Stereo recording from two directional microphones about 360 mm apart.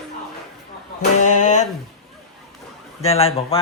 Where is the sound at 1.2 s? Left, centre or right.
Centre.